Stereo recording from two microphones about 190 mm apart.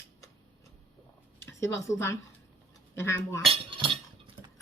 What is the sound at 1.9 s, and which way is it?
Speech, 15° left (ahead or behind).